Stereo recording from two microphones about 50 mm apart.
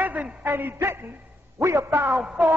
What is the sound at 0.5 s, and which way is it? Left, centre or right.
Speech, right.